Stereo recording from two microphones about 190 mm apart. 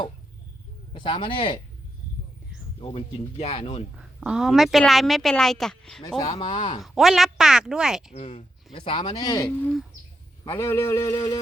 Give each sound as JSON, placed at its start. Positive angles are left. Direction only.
{"t": 0.9, "sound": "speech", "side_deg": 25}
{"t": 2.8, "sound": "speech", "side_deg": 30}
{"t": 3.9, "sound": "a woman's voice", "side_deg": -5}
{"t": 6.1, "sound": "speech", "side_deg": 20}
{"t": 6.8, "sound": "speech", "side_deg": 0}
{"t": 8.1, "sound": "speech", "side_deg": 30}